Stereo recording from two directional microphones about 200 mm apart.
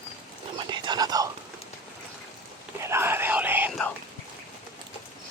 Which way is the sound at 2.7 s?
15° right (ahead or behind).